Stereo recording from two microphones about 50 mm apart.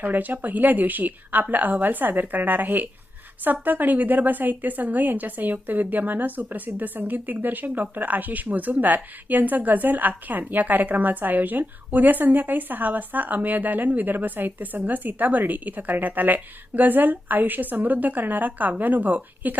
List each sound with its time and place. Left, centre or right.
0.0 s speech: right